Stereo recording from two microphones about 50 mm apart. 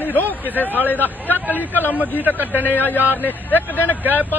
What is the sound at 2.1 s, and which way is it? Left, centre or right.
Speech, right.